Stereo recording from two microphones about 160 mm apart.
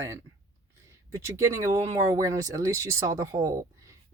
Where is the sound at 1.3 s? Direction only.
20° right (ahead or behind).